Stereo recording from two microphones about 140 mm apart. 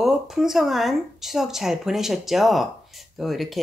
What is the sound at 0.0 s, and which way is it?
Speech, centre (ahead or behind).